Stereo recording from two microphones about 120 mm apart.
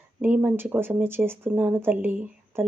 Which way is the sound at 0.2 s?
15° right (ahead or behind).